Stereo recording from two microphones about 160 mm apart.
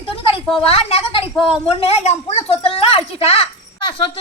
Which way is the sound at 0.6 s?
40° left (ahead or behind).